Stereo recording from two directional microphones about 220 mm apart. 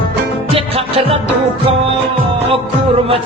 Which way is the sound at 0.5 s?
25° right (ahead or behind).